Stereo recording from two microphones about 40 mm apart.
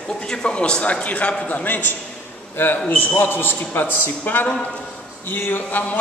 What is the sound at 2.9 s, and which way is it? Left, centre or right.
A man's voice, left.